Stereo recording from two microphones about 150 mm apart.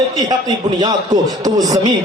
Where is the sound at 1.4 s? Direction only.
25° right (ahead or behind).